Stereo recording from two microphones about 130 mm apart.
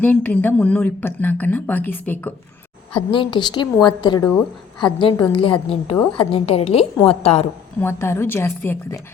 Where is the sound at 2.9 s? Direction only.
45° left (ahead or behind).